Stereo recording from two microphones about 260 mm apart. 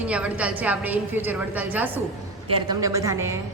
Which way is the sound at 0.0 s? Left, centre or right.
Centre.